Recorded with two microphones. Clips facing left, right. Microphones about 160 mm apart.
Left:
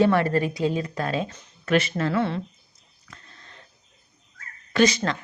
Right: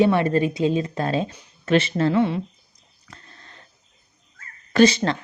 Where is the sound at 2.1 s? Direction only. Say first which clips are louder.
Right 3 dB; 15° right (ahead or behind).